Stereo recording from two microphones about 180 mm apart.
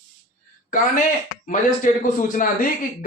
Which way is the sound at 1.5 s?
45° left (ahead or behind).